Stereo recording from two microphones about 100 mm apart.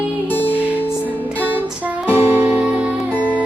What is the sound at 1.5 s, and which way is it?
Music, 15° right (ahead or behind).